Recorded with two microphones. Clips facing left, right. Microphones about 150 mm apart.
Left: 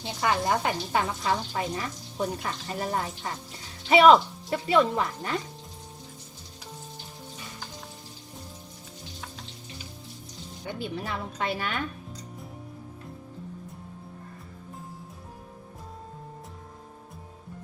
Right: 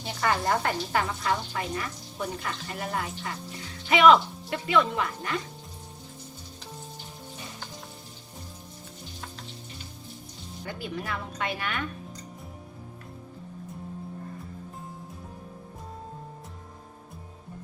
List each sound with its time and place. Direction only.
0.0 s speech: 15° left (ahead or behind); by 5.4 s 35° left (ahead or behind)
10.7 s speech: 25° left (ahead or behind)